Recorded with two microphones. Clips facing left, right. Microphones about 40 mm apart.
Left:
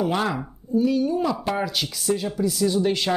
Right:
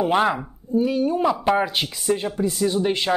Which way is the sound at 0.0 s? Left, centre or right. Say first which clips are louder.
Right 4 dB; right.